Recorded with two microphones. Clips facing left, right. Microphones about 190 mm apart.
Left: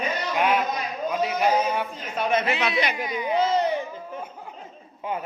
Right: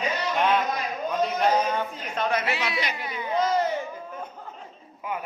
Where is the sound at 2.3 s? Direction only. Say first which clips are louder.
Left 7 dB; 20° left (ahead or behind).